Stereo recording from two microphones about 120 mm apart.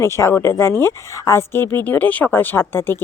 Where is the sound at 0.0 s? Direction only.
20° left (ahead or behind).